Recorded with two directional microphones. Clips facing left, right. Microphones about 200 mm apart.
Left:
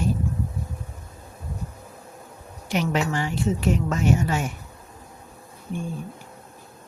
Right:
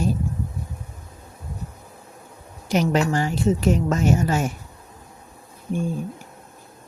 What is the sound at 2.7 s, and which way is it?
A woman's voice, 40° right (ahead or behind).